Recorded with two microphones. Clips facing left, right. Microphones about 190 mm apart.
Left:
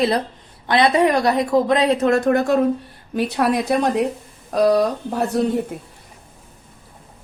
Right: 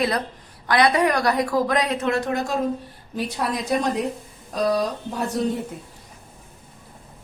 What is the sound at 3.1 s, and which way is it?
A woman's voice, 65° left (ahead or behind).